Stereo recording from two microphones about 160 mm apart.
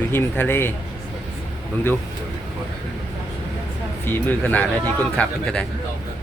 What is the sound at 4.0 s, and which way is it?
A man's voice, 10° left (ahead or behind).